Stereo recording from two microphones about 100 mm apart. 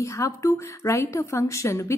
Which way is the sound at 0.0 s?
30° left (ahead or behind).